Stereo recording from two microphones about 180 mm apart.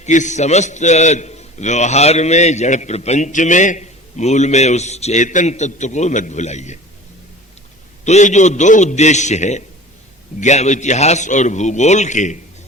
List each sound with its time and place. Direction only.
0.0 s a man's voice: 40° left (ahead or behind)
8.0 s a man's voice: 40° left (ahead or behind)